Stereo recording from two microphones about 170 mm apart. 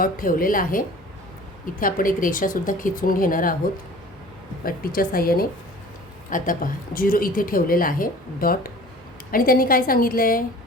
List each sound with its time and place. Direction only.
0.0 s a woman's voice: 55° left (ahead or behind)
4.6 s a woman's voice: 60° left (ahead or behind)